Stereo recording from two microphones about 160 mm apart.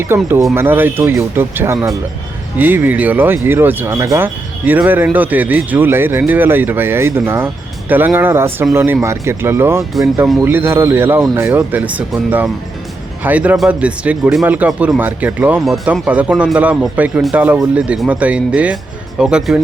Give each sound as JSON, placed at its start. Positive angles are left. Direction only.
{"t": 0.1, "sound": "speech", "side_deg": -15}